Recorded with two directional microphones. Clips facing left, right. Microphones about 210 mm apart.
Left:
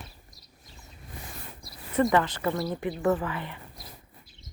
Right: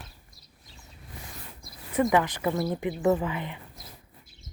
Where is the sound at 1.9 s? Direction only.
10° right (ahead or behind).